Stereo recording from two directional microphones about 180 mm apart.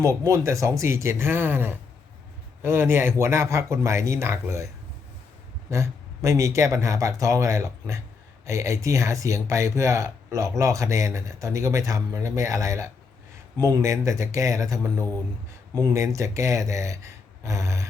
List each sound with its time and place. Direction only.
0.0 s speech: 15° right (ahead or behind)
5.7 s speech: 15° right (ahead or behind)